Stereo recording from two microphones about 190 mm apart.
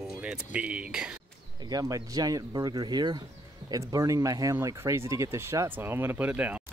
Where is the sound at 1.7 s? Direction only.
20° right (ahead or behind).